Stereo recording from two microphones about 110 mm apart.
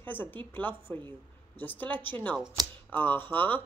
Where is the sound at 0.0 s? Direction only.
15° left (ahead or behind).